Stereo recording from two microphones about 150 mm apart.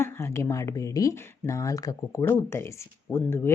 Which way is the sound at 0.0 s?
15° left (ahead or behind).